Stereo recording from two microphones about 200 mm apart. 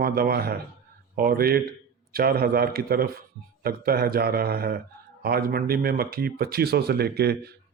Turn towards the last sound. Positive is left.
turn(degrees=-55)  # may be behind; listen again after turning